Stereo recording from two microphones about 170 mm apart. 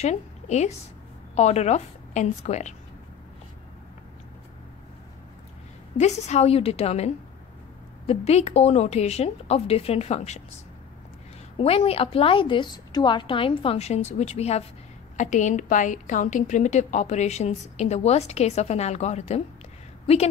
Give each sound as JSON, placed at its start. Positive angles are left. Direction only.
{"t": 0.0, "sound": "a woman's voice", "side_deg": 40}
{"t": 5.9, "sound": "a woman's voice", "side_deg": 40}
{"t": 11.5, "sound": "a woman's voice", "side_deg": 35}